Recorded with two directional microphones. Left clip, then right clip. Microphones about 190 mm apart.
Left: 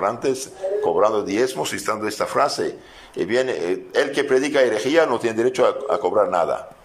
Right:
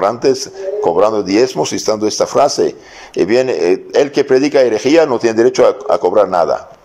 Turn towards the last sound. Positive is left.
turn(degrees=0)  # may be behind; listen again after turning